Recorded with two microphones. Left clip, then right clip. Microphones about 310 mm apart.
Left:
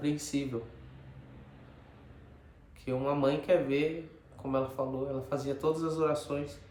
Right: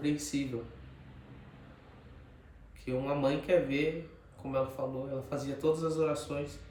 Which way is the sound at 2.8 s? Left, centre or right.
Centre.